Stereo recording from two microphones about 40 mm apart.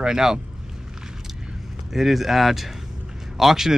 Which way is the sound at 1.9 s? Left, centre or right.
Centre.